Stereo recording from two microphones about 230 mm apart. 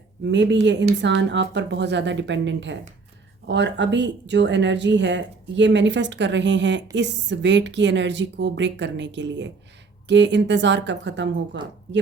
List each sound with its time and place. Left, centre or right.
0.3 s speech: right